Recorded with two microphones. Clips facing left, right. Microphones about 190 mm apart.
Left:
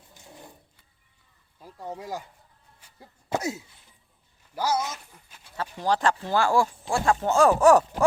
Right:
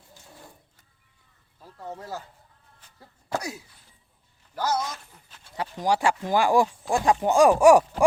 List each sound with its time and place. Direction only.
0.1 s printer: 20° left (ahead or behind)
1.6 s speech: 10° left (ahead or behind)
2.8 s cough: 15° left (ahead or behind)
4.5 s speech: 10° left (ahead or behind)
5.5 s speech: 15° right (ahead or behind)